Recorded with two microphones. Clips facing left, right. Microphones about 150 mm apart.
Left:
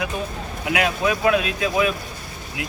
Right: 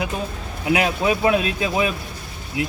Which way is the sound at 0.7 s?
30° right (ahead or behind).